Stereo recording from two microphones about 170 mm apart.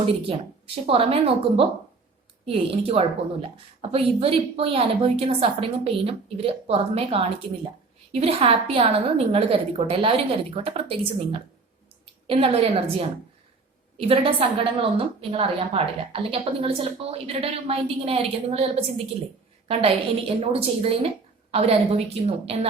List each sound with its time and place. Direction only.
0.9 s a woman's voice: 35° right (ahead or behind)